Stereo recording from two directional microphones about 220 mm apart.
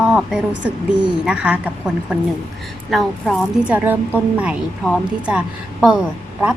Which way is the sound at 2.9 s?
5° right (ahead or behind).